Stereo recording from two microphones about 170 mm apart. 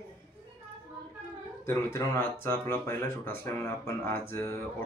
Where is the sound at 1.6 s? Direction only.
15° left (ahead or behind).